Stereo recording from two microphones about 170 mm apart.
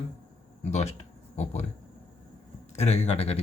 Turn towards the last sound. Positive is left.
turn(degrees=35)  # may be behind; listen again after turning